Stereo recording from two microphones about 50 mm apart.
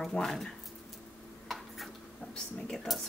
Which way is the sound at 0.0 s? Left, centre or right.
Centre.